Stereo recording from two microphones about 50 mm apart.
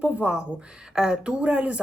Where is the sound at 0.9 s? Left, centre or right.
Centre.